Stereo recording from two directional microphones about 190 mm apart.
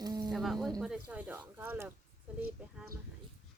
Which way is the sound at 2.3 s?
10° right (ahead or behind).